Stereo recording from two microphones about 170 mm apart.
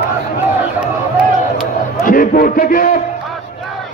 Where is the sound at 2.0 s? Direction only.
55° left (ahead or behind).